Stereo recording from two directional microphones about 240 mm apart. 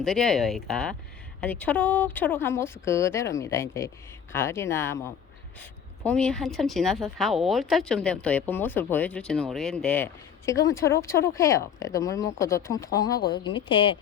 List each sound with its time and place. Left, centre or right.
0.0 s speech: centre
6.1 s speech: centre
13.1 s a woman's voice: left
13.4 s speech: centre